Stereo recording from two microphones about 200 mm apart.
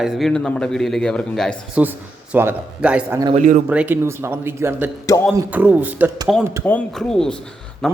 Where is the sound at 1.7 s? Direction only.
10° right (ahead or behind).